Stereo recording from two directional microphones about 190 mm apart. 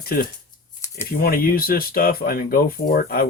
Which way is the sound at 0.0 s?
50° left (ahead or behind).